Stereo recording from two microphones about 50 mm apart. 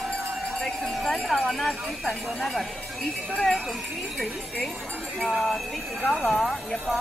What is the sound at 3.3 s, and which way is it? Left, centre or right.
Speech, centre.